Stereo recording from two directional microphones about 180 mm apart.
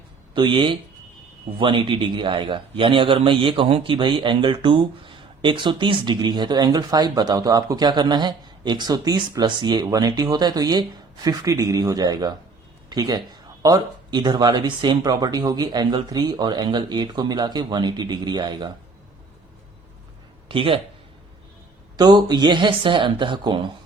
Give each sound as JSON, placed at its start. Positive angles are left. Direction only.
{"t": 0.3, "sound": "a man's voice", "side_deg": -25}
{"t": 20.5, "sound": "a man's voice", "side_deg": -30}
{"t": 21.9, "sound": "a man's voice", "side_deg": -25}